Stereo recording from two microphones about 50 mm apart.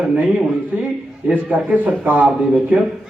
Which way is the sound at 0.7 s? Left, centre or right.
Right.